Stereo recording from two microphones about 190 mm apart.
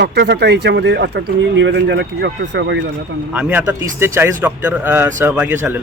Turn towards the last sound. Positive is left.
turn(degrees=-10)  # may be behind; listen again after turning